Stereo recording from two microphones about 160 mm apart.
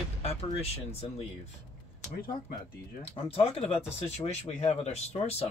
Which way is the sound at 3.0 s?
40° left (ahead or behind).